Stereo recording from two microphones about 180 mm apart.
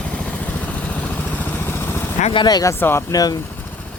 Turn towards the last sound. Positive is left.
turn(degrees=20)  # may be behind; listen again after turning